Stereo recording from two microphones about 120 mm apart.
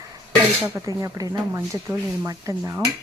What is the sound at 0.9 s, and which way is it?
Speech, 30° right (ahead or behind).